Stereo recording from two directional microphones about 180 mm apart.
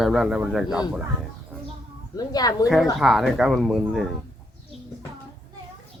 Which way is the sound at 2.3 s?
20° left (ahead or behind).